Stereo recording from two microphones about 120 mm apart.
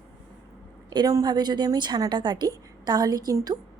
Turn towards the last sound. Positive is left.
turn(degrees=-30)  # may be behind; listen again after turning